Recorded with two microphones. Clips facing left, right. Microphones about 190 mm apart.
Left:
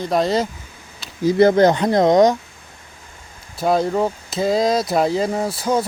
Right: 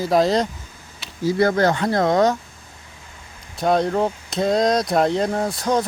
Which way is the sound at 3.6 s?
Centre (ahead or behind).